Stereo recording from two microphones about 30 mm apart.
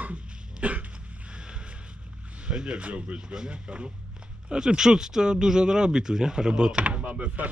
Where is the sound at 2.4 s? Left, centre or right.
Right.